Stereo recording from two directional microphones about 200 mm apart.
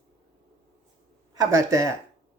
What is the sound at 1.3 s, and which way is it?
Speech, 15° right (ahead or behind).